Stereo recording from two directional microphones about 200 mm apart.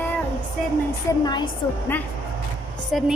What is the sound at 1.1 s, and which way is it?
Speech, 15° left (ahead or behind).